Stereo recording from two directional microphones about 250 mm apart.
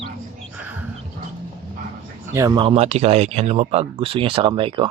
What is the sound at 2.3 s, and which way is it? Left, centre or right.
Speech, centre.